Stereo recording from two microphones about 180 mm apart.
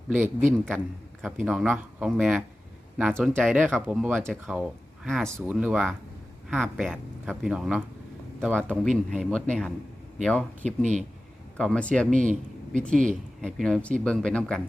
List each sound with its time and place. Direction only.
0.1 s speech: 10° right (ahead or behind)
3.4 s speech: 10° right (ahead or behind)
8.7 s speech: 5° left (ahead or behind)
12.1 s speech: 45° right (ahead or behind)
13.4 s speech: centre (ahead or behind)